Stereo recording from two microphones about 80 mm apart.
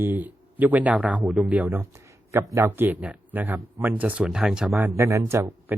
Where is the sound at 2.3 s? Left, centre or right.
Right; by 4.3 s centre.